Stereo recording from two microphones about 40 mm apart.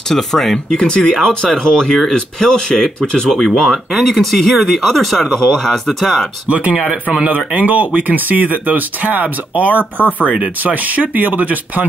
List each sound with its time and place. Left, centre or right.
0.1 s speech: centre
3.3 s speech: centre
7.2 s speech: right
9.9 s speech: left
10.6 s speech: right